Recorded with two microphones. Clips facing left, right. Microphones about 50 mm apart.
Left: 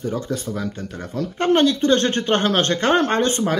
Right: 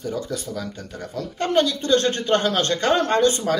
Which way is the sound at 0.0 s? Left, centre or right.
Left.